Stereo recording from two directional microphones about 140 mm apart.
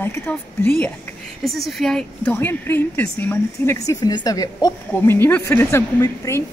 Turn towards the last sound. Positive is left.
turn(degrees=20)  # may be behind; listen again after turning